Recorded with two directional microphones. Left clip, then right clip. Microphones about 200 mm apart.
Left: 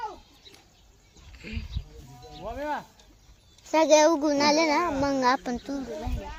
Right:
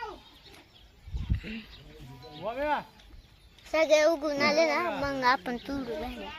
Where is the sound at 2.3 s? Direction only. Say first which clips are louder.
Right 2 dB; 10° left (ahead or behind).